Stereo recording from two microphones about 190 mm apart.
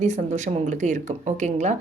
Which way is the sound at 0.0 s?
40° right (ahead or behind).